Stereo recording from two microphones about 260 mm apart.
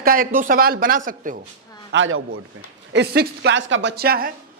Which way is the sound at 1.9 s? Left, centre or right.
Right.